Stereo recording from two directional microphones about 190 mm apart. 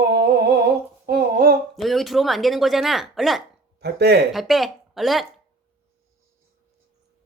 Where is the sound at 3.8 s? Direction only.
60° right (ahead or behind).